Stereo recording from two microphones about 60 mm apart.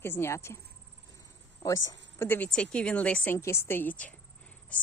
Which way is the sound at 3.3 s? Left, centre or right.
Left.